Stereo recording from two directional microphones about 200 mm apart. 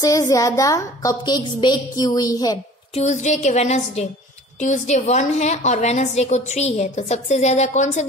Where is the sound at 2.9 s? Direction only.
35° left (ahead or behind).